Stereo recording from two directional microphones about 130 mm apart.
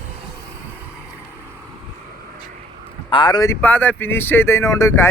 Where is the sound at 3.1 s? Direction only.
35° left (ahead or behind).